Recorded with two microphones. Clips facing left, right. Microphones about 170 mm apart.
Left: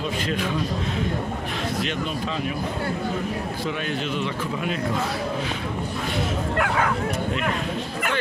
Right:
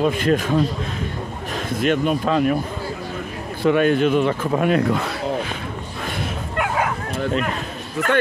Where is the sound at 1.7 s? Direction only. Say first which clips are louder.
Right 8 dB; 55° right (ahead or behind).